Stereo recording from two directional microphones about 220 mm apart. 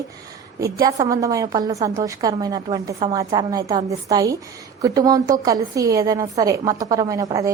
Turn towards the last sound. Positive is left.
turn(degrees=-15)  # may be behind; listen again after turning